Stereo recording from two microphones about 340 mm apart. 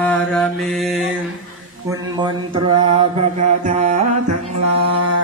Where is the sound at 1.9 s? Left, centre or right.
Centre.